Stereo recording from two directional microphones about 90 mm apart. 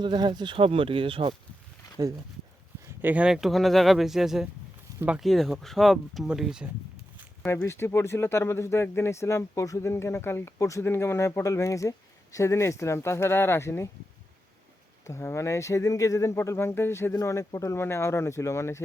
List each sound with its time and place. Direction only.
0.0 s speech: 60° right (ahead or behind); by 1.4 s 80° right
2.0 s speech: 40° right (ahead or behind)
3.0 s speech: 20° right (ahead or behind)
3.2 s speech: 5° right (ahead or behind)
4.9 s a sound: 45° right (ahead or behind)
5.2 s speech: centre (ahead or behind)
7.4 s speech: 30° left (ahead or behind)
15.0 s speech: 30° left (ahead or behind)